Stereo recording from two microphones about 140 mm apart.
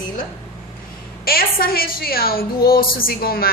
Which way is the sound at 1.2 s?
90° left.